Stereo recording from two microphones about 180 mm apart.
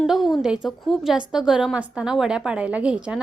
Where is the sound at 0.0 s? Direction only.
Centre (ahead or behind).